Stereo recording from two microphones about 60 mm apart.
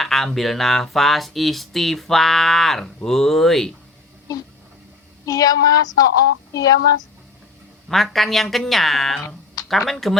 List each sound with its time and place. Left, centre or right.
0.0 s a sound: centre
0.3 s speech: centre
5.2 s speech: left
7.9 s speech: centre